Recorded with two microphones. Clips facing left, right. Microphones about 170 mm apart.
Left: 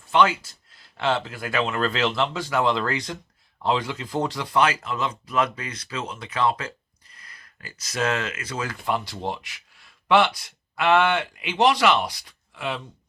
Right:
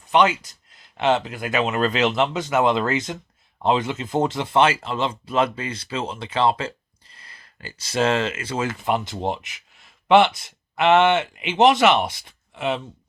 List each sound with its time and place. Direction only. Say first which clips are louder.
0.0 s speech: right 2 dB; 20° right (ahead or behind)